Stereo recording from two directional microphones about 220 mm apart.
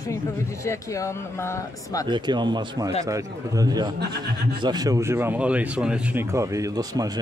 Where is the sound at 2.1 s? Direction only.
20° right (ahead or behind).